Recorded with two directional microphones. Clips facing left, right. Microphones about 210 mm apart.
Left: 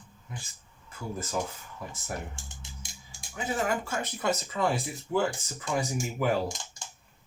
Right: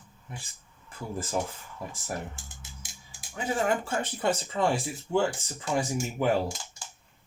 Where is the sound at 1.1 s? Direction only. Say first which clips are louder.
Right 3 dB; 30° right (ahead or behind).